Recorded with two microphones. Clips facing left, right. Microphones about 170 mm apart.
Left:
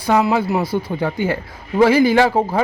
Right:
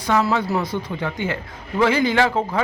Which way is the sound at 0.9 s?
35° left (ahead or behind).